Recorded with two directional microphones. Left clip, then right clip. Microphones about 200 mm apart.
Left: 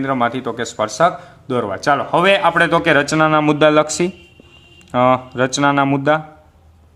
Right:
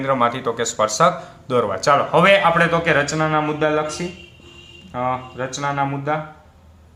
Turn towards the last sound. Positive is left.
turn(degrees=50)  # may be behind; listen again after turning